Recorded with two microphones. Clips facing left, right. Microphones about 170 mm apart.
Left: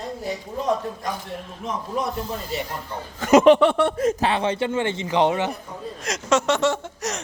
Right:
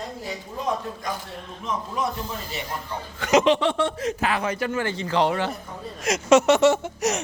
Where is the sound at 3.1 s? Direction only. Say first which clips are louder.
Left 6 dB; 45° left (ahead or behind).